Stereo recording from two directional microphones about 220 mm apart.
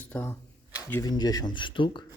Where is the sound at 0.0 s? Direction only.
10° left (ahead or behind).